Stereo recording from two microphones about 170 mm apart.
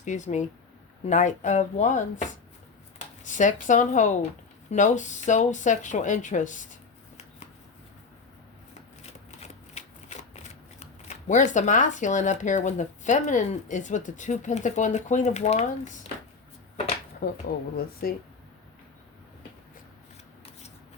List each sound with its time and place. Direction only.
0.0 s speech: 45° left (ahead or behind)
3.2 s speech: 45° left (ahead or behind)
9.4 s shuffling cards: 40° left (ahead or behind)
17.2 s speech: 65° left (ahead or behind)